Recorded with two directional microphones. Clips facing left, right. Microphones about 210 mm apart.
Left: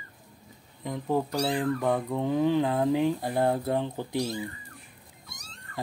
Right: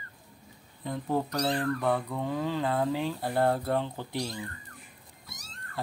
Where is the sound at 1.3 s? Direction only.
10° left (ahead or behind).